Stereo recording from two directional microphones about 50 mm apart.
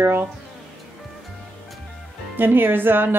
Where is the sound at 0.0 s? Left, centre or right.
Right.